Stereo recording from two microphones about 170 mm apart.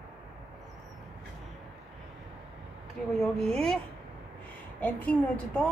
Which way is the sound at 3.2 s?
Centre (ahead or behind).